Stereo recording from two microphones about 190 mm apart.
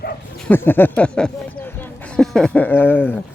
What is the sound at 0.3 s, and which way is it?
Speech, 10° left (ahead or behind).